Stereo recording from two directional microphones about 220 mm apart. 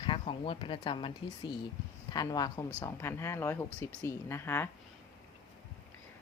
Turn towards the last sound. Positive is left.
turn(degrees=10)  # may be behind; listen again after turning